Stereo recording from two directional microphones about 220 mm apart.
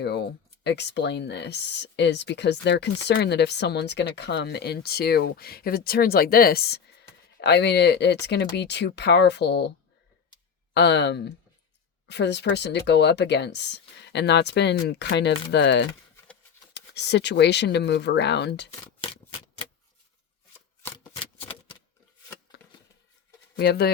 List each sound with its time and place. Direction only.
0.0 s speech: 50° left (ahead or behind)
10.8 s speech: 50° left (ahead or behind)
20.8 s shuffling cards: 10° left (ahead or behind)
23.6 s speech: 45° left (ahead or behind)